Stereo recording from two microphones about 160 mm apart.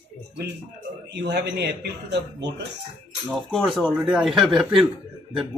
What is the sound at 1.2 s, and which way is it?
Speech, 90° right.